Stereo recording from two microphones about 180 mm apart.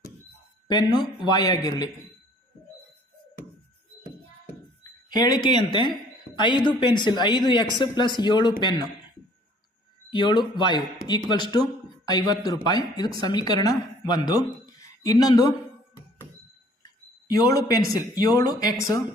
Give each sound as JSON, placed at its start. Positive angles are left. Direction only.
{"t": 0.7, "sound": "speech", "side_deg": 25}
{"t": 4.8, "sound": "speech", "side_deg": 20}
{"t": 10.1, "sound": "speech", "side_deg": 25}
{"t": 16.8, "sound": "speech", "side_deg": 20}